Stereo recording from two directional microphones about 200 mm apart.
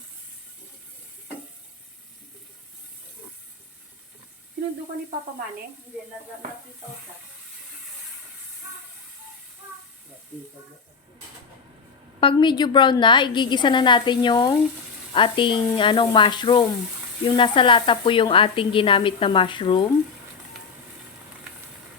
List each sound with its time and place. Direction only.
12.2 s speech: 25° left (ahead or behind)